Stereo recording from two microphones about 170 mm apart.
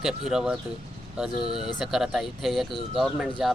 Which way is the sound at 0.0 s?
Centre (ahead or behind).